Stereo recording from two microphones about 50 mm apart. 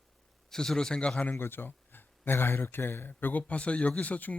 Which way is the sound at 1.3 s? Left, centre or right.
Left.